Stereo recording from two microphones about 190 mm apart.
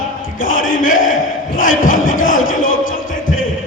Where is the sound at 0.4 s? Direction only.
45° left (ahead or behind).